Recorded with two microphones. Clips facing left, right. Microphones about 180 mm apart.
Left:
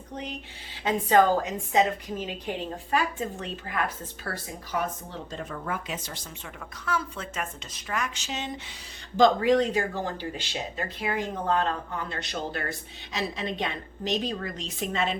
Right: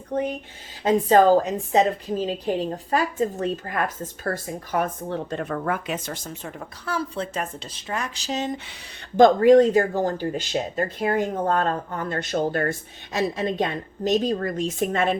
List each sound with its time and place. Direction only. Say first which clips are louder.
0.1 s speech: right 11 dB; 55° right (ahead or behind)
0.9 s a woman's voice: right 5 dB; 35° right (ahead or behind)
9.1 s speech: right 7 dB; 50° right (ahead or behind)